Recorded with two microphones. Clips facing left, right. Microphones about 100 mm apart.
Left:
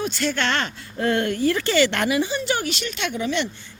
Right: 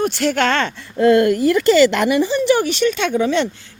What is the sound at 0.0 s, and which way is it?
Speech, 70° right (ahead or behind).